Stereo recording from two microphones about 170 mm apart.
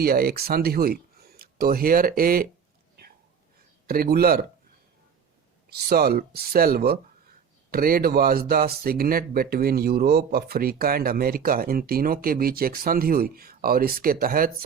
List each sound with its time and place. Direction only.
0.0 s speech: 65° right (ahead or behind)
3.8 s speech: 60° right (ahead or behind)
5.6 s speech: 65° right (ahead or behind)